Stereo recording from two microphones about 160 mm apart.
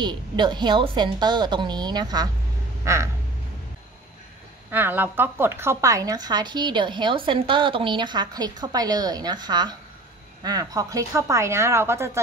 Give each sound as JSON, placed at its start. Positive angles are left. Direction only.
{"t": 0.0, "sound": "a woman's voice", "side_deg": -30}
{"t": 2.8, "sound": "a sound", "side_deg": -20}
{"t": 4.6, "sound": "a woman's voice", "side_deg": -10}